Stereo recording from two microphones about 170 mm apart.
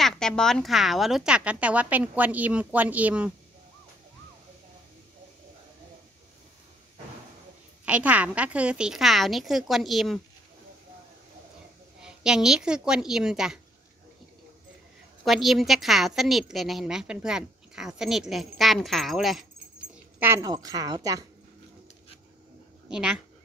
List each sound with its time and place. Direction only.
0.0 s a woman's voice: 5° left (ahead or behind)
7.8 s a woman's voice: 10° right (ahead or behind)
12.0 s a woman's voice: 5° right (ahead or behind)
15.2 s a woman's voice: centre (ahead or behind)
20.2 s a woman's voice: 15° right (ahead or behind)
22.8 s a woman's voice: 5° right (ahead or behind)